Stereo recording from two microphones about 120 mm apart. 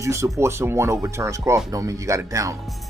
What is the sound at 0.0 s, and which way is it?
Speech, 25° right (ahead or behind).